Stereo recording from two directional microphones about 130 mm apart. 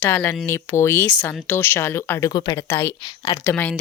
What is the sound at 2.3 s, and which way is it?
Speech, 35° left (ahead or behind).